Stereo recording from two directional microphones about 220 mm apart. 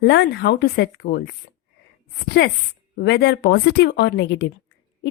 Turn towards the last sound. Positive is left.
turn(degrees=50)  # may be behind; listen again after turning